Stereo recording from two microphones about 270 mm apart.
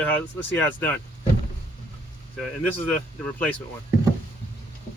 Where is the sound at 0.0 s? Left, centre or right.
Centre.